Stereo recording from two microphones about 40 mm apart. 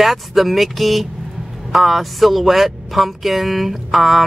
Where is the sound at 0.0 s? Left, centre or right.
Centre.